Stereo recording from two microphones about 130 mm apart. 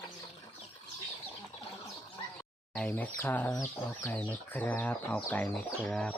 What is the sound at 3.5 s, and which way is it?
Speech, 25° left (ahead or behind).